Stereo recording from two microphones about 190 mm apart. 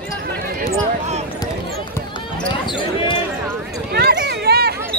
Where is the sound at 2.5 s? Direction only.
25° left (ahead or behind).